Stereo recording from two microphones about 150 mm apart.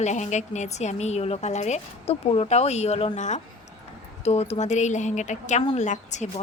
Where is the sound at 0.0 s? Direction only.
50° left (ahead or behind).